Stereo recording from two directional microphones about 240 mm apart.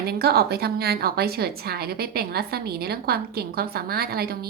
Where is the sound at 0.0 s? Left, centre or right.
Right.